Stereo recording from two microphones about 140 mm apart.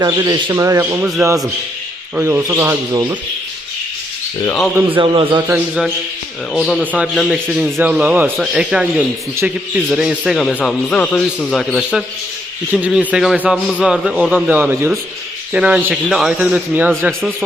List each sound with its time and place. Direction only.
0.0 s a man's voice: 30° right (ahead or behind)
4.9 s a man's voice: 40° right (ahead or behind)
5.5 s speech: 10° right (ahead or behind)
6.5 s a man's voice: centre (ahead or behind)
12.7 s speech: 5° right (ahead or behind)